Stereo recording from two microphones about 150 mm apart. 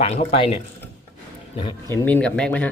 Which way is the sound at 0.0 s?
40° left (ahead or behind).